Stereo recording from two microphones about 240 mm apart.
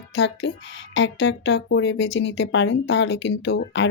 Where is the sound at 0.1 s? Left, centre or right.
Left.